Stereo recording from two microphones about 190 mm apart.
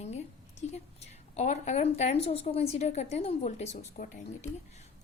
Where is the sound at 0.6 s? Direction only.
35° left (ahead or behind).